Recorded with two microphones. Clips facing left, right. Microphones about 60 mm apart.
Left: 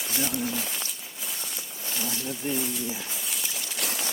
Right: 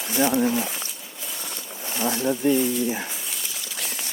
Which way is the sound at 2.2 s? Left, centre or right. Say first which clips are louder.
Right 12 dB; right.